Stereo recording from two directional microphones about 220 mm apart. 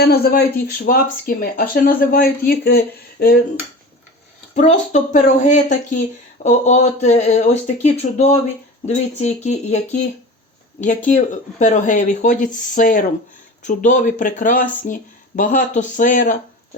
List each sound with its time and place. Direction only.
0.0 s speech: 45° left (ahead or behind)
4.5 s speech: 35° left (ahead or behind)